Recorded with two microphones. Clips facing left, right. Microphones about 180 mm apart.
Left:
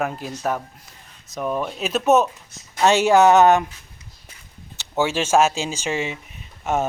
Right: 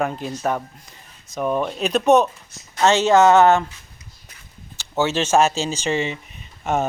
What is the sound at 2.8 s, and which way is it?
Speech, 15° left (ahead or behind).